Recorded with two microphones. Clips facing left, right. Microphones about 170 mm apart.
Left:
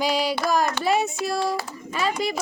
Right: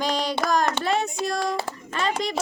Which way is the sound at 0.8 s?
5° left (ahead or behind).